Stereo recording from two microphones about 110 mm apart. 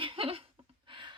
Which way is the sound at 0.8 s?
45° right (ahead or behind).